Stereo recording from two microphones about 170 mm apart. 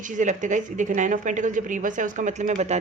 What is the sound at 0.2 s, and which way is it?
Speech, 45° right (ahead or behind).